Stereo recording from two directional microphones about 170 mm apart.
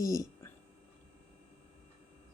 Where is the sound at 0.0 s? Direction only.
20° left (ahead or behind).